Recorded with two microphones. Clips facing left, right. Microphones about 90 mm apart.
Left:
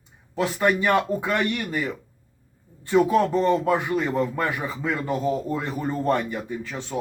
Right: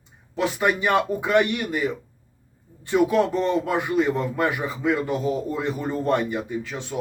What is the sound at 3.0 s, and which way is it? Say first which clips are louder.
Speech: left 1 dB; 35° left (ahead or behind).